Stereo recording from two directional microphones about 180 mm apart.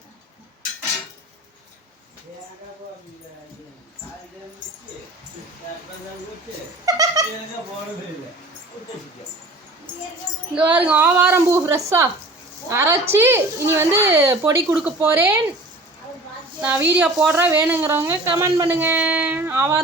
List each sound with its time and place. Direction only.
6.8 s speech: 20° right (ahead or behind)
10.5 s a woman's voice: 10° right (ahead or behind)
16.6 s a woman's voice: 10° right (ahead or behind)